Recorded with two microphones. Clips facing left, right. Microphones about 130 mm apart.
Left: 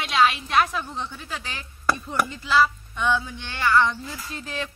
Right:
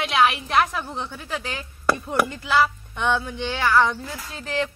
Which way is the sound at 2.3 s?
60° right (ahead or behind).